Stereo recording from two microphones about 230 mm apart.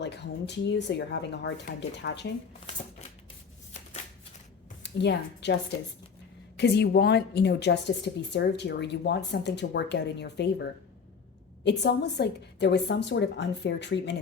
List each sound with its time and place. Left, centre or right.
0.0 s a woman's voice: left
4.8 s a woman's voice: left
6.6 s a woman's voice: left